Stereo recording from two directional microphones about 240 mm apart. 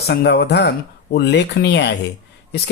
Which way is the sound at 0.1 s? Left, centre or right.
Left.